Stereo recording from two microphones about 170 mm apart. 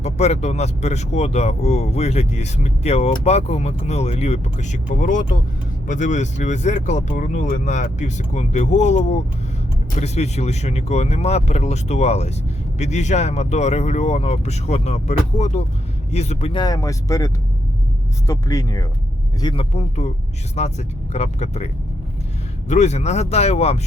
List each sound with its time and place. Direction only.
0.0 s speech: 40° left (ahead or behind)
22.7 s speech: 40° left (ahead or behind)